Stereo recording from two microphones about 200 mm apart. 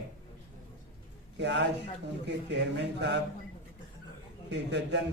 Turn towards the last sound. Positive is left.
turn(degrees=-60)  # may be behind; listen again after turning